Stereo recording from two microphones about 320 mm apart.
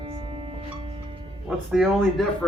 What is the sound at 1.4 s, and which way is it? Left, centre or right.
Speech, centre.